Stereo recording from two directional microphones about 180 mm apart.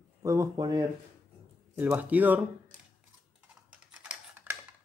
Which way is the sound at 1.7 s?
10° right (ahead or behind).